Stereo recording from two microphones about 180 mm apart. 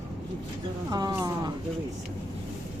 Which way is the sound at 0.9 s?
20° right (ahead or behind).